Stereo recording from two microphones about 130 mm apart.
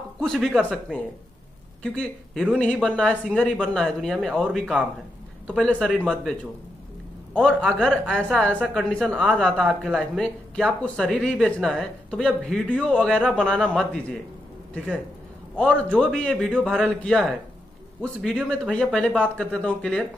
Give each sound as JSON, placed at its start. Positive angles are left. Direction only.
{"t": 0.2, "sound": "speech", "side_deg": 0}
{"t": 7.3, "sound": "speech", "side_deg": 5}
{"t": 15.5, "sound": "speech", "side_deg": 10}